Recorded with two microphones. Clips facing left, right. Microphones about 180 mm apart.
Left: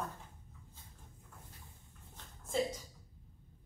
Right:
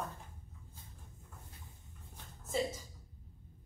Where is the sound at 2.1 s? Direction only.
5° right (ahead or behind).